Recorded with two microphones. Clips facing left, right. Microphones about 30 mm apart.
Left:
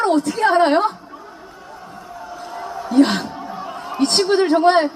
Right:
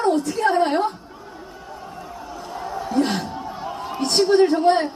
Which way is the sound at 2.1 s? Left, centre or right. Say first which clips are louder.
Left 3 dB; centre.